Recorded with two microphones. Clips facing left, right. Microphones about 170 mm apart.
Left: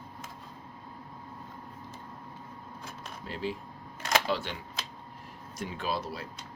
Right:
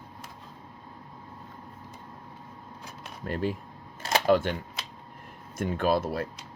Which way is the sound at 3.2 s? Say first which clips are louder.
Right 5 dB; 50° right (ahead or behind).